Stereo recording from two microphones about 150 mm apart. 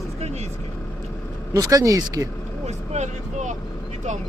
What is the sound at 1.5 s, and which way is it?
Speech, 25° right (ahead or behind).